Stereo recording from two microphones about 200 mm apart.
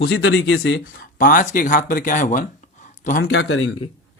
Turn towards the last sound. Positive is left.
turn(degrees=80)